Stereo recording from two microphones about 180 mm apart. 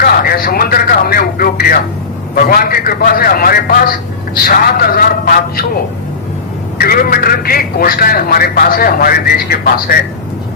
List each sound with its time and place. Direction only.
0.0 s radio: 55° left (ahead or behind)
2.3 s a man's voice: 55° left (ahead or behind)
6.7 s a man's voice: 55° left (ahead or behind)